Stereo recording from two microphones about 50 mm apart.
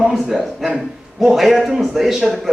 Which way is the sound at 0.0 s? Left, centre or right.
Centre.